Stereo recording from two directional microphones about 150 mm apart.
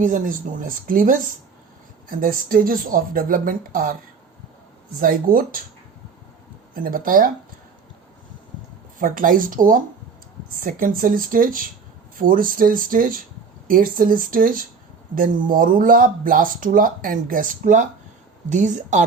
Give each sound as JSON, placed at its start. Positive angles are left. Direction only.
{"t": 0.0, "sound": "speech", "side_deg": -60}
{"t": 4.9, "sound": "speech", "side_deg": -70}
{"t": 6.8, "sound": "speech", "side_deg": -70}
{"t": 9.0, "sound": "speech", "side_deg": -65}